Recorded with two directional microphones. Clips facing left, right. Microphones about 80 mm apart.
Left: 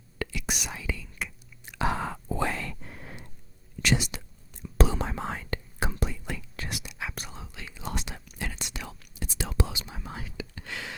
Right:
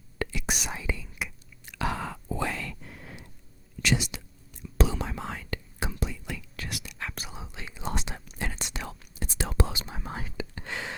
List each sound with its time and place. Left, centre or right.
0.2 s whispering: right
1.6 s chewing: left
2.3 s whispering: left
6.6 s whispering: left
7.0 s whispering: centre
7.3 s whispering: centre